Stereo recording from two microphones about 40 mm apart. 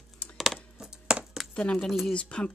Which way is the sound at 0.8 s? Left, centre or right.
Centre.